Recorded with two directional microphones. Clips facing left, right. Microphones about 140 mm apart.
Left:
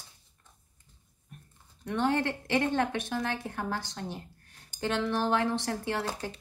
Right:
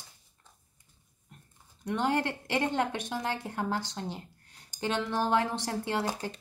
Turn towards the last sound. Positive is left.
turn(degrees=-20)  # may be behind; listen again after turning